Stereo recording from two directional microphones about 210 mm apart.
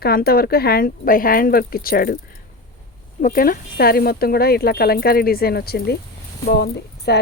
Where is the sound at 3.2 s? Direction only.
40° left (ahead or behind).